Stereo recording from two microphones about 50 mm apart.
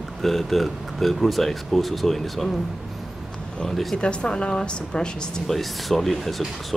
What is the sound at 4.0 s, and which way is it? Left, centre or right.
A woman's voice, left.